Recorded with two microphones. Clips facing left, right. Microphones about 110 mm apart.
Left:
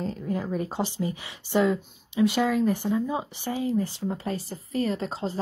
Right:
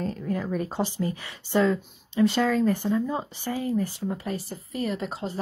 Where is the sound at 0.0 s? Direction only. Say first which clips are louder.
Right 1 dB; 20° left (ahead or behind).